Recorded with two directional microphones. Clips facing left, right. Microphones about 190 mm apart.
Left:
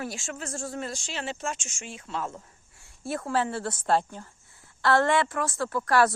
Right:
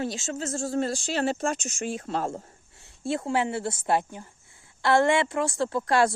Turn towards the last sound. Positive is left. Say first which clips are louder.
# right 1 dB
turn(degrees=-25)  # may be behind; listen again after turning